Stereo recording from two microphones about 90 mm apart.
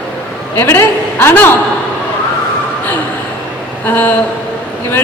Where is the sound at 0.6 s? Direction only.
30° left (ahead or behind).